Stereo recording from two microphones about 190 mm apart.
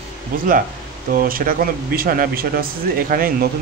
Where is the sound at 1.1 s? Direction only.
50° right (ahead or behind).